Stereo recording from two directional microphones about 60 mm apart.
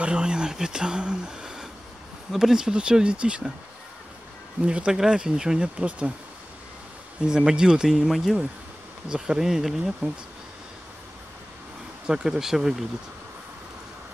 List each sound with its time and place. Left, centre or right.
0.0 s speech: centre
4.6 s speech: centre
7.2 s speech: centre
12.1 s speech: centre